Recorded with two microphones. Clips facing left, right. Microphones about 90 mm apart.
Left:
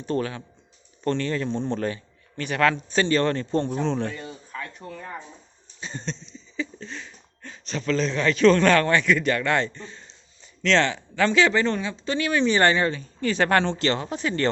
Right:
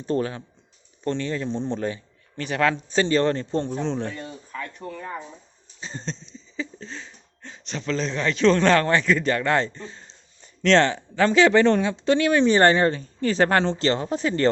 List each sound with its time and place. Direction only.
0.0 s speech: 30° right (ahead or behind)
1.0 s a man's voice: 20° right (ahead or behind)
4.5 s speech: 5° left (ahead or behind)
5.8 s speech: 30° right (ahead or behind)
9.8 s a sound: 25° right (ahead or behind)
10.6 s speech: 45° right (ahead or behind)
11.6 s speech: 60° right (ahead or behind); by 14.5 s 30° right (ahead or behind)